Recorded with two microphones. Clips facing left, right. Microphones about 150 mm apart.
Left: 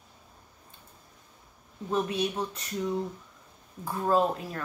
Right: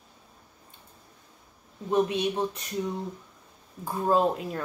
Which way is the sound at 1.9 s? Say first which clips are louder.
Right 4 dB; 20° right (ahead or behind).